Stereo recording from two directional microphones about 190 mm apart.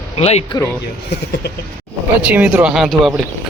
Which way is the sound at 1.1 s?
55° left (ahead or behind).